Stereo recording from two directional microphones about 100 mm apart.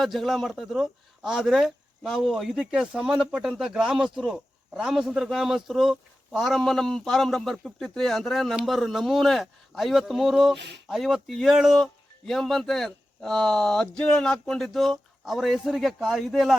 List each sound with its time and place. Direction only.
0.0 s a man's voice: centre (ahead or behind)